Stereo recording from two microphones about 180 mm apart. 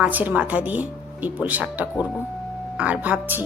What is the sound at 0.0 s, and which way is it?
Speech, 10° right (ahead or behind).